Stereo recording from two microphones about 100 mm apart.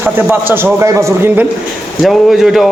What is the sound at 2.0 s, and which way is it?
Speech, centre (ahead or behind).